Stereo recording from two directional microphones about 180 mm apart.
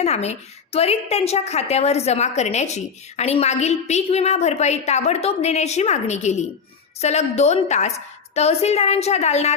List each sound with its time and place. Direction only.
0.0 s a woman's voice: 35° left (ahead or behind)